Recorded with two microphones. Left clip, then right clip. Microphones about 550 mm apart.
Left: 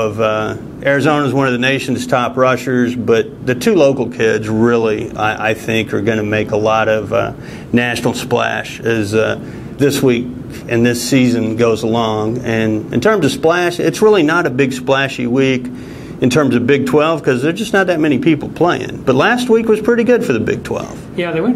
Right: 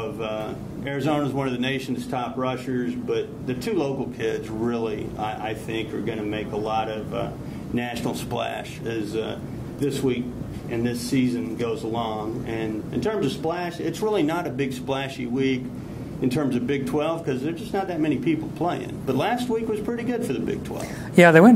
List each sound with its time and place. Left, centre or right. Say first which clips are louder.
0.2 s a man's voice: left 14 dB; left
10.7 s a man's voice: left 13 dB; left
21.2 s speech: right 5 dB; right